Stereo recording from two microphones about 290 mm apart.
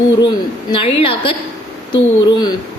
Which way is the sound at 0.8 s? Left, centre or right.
Centre.